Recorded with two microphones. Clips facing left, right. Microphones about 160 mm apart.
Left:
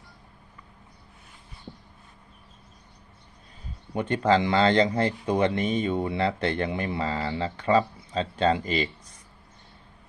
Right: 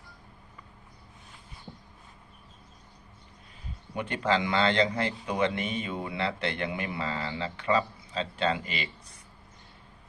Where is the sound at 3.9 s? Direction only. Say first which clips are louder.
Left 5 dB; 35° left (ahead or behind).